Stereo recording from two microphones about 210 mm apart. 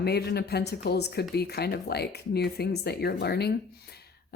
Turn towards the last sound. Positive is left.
turn(degrees=50)  # may be behind; listen again after turning